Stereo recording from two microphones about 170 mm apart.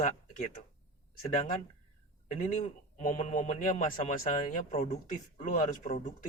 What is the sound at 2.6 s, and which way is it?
A man's voice, 45° left (ahead or behind).